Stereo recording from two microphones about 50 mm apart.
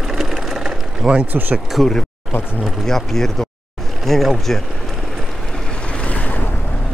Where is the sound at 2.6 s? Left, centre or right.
Centre; by 6.6 s left.